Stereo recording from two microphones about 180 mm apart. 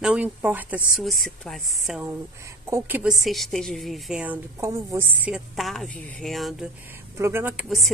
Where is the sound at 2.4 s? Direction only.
15° right (ahead or behind).